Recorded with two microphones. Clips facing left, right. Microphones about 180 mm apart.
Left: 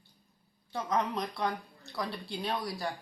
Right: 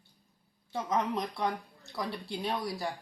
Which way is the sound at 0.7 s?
20° right (ahead or behind).